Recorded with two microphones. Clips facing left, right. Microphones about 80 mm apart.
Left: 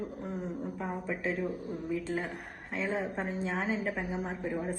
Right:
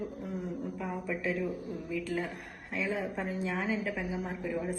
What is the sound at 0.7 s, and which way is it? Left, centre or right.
Speech, left.